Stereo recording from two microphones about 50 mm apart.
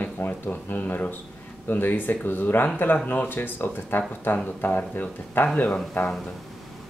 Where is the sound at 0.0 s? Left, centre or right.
Left.